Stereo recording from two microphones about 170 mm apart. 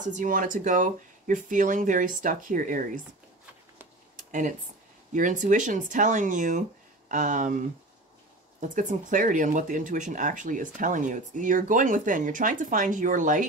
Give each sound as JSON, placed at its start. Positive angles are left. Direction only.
{"t": 0.0, "sound": "speech", "side_deg": -50}
{"t": 4.3, "sound": "speech", "side_deg": -50}